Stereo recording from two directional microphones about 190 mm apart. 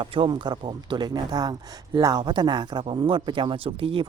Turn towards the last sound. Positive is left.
turn(degrees=-25)  # may be behind; listen again after turning